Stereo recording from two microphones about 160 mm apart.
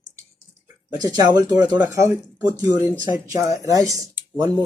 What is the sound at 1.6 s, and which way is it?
Speech, 10° right (ahead or behind).